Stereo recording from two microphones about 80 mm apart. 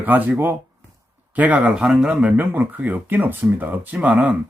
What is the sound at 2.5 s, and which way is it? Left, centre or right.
Speech, right.